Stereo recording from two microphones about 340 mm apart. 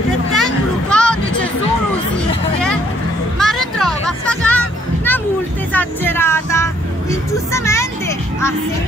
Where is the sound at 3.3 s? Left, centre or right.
Centre.